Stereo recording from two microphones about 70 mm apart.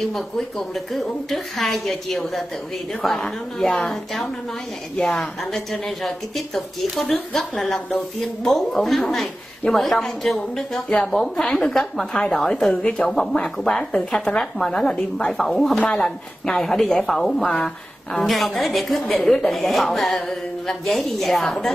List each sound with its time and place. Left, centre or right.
0.0 s a woman's voice: centre
12.7 s speech: centre
13.1 s a woman's voice: centre